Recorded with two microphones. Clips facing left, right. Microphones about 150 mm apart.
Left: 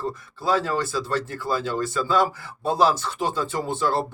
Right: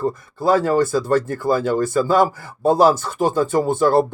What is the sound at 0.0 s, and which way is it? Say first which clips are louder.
Speech: right 7 dB; 50° right (ahead or behind).